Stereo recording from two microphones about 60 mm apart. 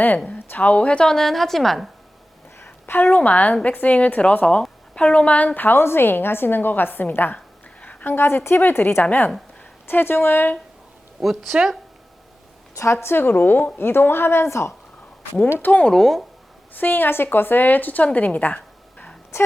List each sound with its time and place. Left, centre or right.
0.3 s a woman's voice: left; by 1.9 s centre
2.6 s a woman's voice: left
5.5 s a woman's voice: left
7.3 s a sound: left
8.1 s a woman's voice: left
11.2 s speech: centre
12.7 s a woman's voice: left
13.7 s a woman's voice: left
15.4 s a woman's voice: left
15.7 s a woman's voice: centre
16.7 s a woman's voice: left
19.3 s speech: left